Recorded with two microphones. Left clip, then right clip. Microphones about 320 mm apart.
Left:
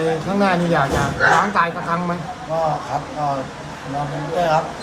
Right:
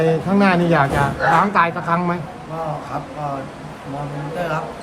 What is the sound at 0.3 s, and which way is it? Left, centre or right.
A man's voice, right.